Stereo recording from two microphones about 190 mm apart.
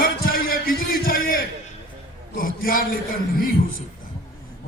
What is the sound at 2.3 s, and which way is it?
Speech, 45° left (ahead or behind).